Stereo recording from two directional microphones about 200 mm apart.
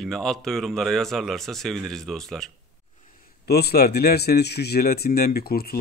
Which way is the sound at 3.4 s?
50° left (ahead or behind).